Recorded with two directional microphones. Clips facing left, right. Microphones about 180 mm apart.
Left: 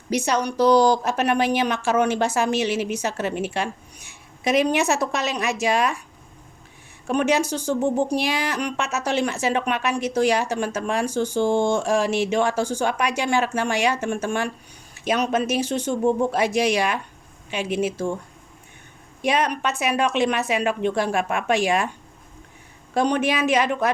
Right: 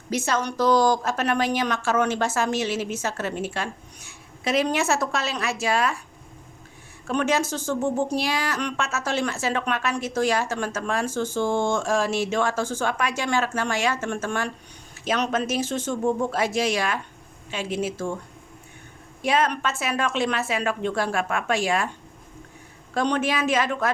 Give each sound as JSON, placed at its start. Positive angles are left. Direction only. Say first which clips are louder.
{"t": 0.1, "sound": "speech", "louder": "left 3 dB", "side_deg": 15}
{"t": 7.1, "sound": "speech", "louder": "left 3 dB", "side_deg": 15}
{"t": 19.2, "sound": "speech", "louder": "left 1 dB", "side_deg": 15}
{"t": 23.0, "sound": "speech", "louder": "left 3 dB", "side_deg": 15}